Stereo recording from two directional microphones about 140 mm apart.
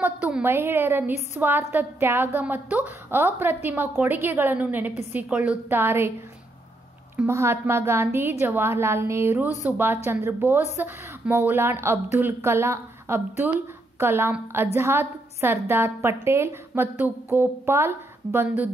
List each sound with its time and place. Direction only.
0.0 s a woman's voice: 10° right (ahead or behind)
7.2 s a woman's voice: 20° right (ahead or behind)